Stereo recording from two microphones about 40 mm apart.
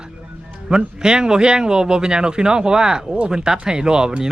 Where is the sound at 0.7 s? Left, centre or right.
Centre.